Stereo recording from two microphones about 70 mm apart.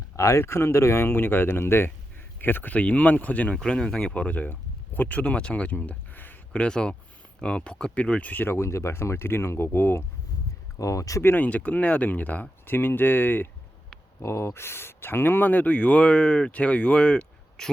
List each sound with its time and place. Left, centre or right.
0.2 s speech: left
6.5 s speech: centre
8.5 s speech: left
10.8 s speech: left
11.2 s speech: left
11.4 s speech: left
14.2 s speech: left; by 17.7 s centre